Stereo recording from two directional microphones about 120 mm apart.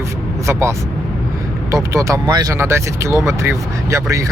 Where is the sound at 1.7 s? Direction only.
25° right (ahead or behind).